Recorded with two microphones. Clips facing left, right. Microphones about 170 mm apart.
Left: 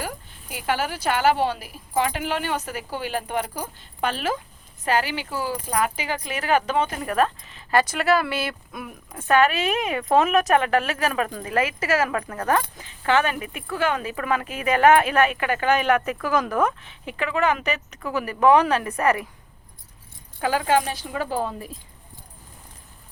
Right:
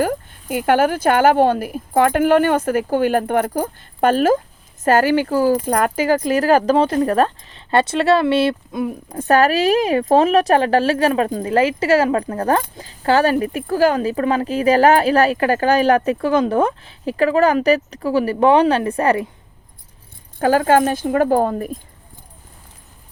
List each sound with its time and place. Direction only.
0.0 s speech: 50° right (ahead or behind); by 19.3 s 30° right (ahead or behind)
20.4 s speech: 45° right (ahead or behind)